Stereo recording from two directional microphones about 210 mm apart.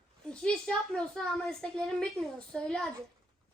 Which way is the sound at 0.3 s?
5° left (ahead or behind).